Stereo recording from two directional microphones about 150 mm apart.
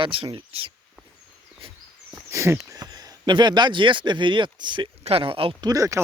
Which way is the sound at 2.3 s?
20° right (ahead or behind).